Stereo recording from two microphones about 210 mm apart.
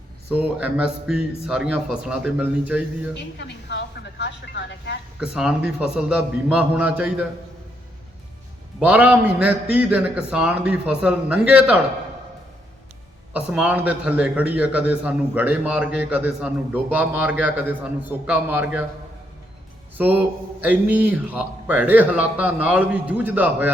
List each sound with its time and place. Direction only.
0.3 s a man's voice: 5° right (ahead or behind)
3.3 s speech: 55° left (ahead or behind)
5.2 s a man's voice: 5° right (ahead or behind)
8.8 s a man's voice: 5° right (ahead or behind)
13.3 s a man's voice: 5° right (ahead or behind)
20.0 s a man's voice: 10° right (ahead or behind)